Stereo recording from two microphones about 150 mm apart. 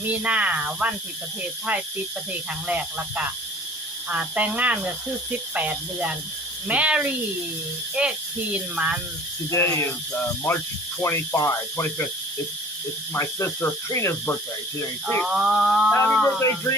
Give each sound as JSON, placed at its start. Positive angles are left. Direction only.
{"t": 0.1, "sound": "speech", "side_deg": -10}
{"t": 2.6, "sound": "speech", "side_deg": -10}
{"t": 9.5, "sound": "speech", "side_deg": 15}
{"t": 13.1, "sound": "speech", "side_deg": 15}
{"t": 15.3, "sound": "cattle", "side_deg": -5}
{"t": 15.9, "sound": "speech", "side_deg": 15}